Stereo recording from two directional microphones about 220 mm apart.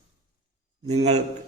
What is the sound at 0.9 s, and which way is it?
Speech, 30° right (ahead or behind).